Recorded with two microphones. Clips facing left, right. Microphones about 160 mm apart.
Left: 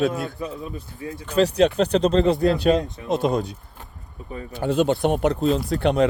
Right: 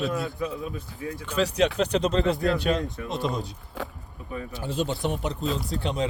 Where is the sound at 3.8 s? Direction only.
90° right.